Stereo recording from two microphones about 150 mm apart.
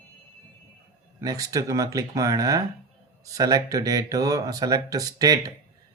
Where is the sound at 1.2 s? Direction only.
25° right (ahead or behind).